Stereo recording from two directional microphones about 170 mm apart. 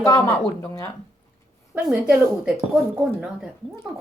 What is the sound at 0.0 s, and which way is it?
Speech, 15° left (ahead or behind).